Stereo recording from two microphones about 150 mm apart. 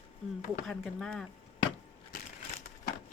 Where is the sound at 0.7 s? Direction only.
5° left (ahead or behind).